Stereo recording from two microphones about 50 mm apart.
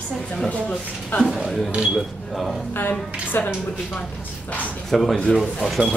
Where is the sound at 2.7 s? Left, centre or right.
Left.